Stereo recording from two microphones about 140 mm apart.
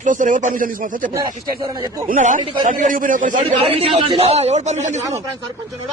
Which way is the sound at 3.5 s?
45° right (ahead or behind).